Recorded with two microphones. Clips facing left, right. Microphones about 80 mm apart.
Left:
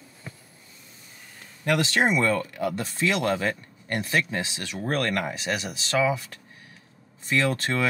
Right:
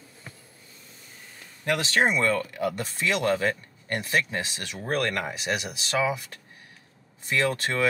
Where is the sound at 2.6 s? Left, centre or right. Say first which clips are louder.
Left 1 dB; centre.